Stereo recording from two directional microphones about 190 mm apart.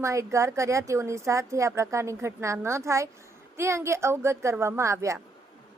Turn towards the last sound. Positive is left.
turn(degrees=-15)  # may be behind; listen again after turning